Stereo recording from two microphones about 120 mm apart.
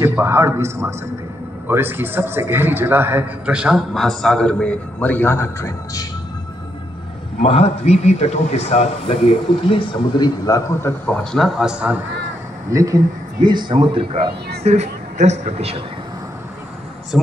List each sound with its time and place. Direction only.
0.0 s a man's voice: 20° right (ahead or behind); by 6.0 s 20° left (ahead or behind)
7.4 s a man's voice: 60° left (ahead or behind); by 10.9 s 30° left (ahead or behind)
11.3 s a man's voice: centre (ahead or behind)
12.7 s a man's voice: 25° right (ahead or behind); by 14.2 s 45° right (ahead or behind)
14.6 s a woman's voice: 65° right (ahead or behind)
17.1 s a man's voice: 5° right (ahead or behind)